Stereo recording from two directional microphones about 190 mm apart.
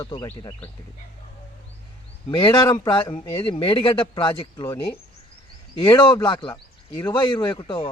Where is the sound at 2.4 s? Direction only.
20° left (ahead or behind).